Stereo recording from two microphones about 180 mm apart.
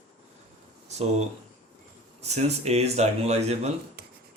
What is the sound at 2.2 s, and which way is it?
Speech, 35° right (ahead or behind).